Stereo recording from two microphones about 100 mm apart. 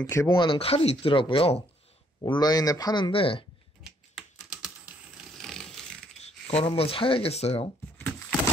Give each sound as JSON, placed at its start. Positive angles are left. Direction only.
{"t": 0.1, "sound": "speech", "side_deg": 30}
{"t": 0.4, "sound": "speech", "side_deg": 65}
{"t": 2.2, "sound": "speech", "side_deg": 45}
{"t": 3.1, "sound": "speech", "side_deg": 65}
{"t": 3.8, "sound": "typing", "side_deg": -5}
{"t": 5.4, "sound": "a sound", "side_deg": 5}
{"t": 6.2, "sound": "speech", "side_deg": 85}